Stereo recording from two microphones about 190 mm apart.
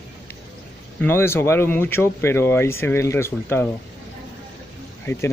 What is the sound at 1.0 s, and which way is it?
Speech, 10° left (ahead or behind).